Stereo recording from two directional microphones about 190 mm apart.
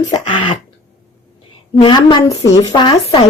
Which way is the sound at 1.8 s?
25° left (ahead or behind).